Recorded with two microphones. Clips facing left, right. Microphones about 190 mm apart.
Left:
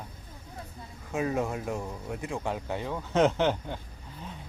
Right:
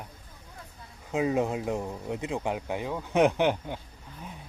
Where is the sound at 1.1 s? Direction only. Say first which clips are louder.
Right 3 dB; 20° right (ahead or behind).